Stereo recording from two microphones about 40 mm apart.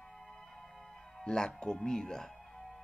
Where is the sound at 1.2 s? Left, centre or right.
Centre.